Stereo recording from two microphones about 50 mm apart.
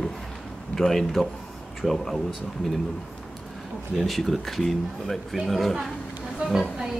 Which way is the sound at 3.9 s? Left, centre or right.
Centre.